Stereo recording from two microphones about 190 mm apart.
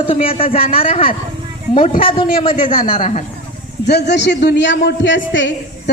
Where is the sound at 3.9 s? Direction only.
60° left (ahead or behind); by 5.9 s 75° left (ahead or behind).